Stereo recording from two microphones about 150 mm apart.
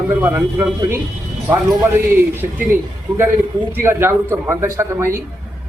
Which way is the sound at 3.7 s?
15° right (ahead or behind).